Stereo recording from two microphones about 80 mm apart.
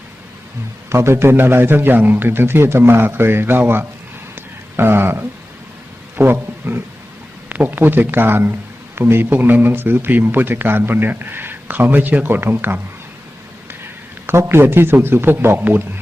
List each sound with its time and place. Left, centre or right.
0.9 s a man's voice: right
14.3 s speech: right